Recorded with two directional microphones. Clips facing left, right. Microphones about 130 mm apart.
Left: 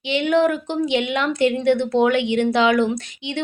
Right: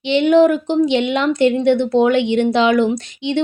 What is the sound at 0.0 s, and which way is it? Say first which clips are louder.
Speech: right 6 dB; 25° right (ahead or behind).